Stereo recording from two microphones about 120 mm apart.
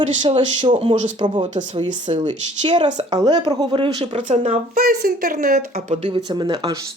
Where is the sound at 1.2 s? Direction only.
40° right (ahead or behind).